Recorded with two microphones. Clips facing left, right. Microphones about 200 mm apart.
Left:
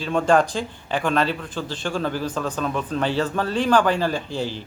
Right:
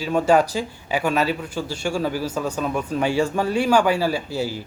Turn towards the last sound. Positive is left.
turn(degrees=-10)  # may be behind; listen again after turning